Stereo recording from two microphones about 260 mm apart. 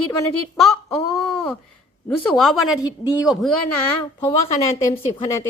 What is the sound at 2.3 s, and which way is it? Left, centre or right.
Speech, centre.